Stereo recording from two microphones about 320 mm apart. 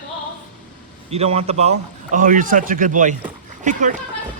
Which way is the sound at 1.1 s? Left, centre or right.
Centre.